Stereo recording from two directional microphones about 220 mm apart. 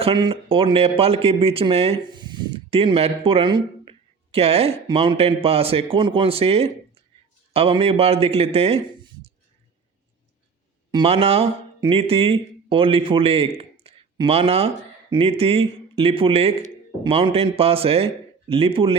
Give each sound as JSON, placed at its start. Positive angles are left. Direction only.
{"t": 0.0, "sound": "speech", "side_deg": -20}
{"t": 10.9, "sound": "speech", "side_deg": -25}
{"t": 13.6, "sound": "a sound", "side_deg": -25}
{"t": 15.1, "sound": "speech", "side_deg": -25}